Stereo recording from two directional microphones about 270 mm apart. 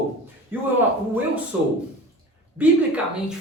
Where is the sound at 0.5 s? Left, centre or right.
Centre.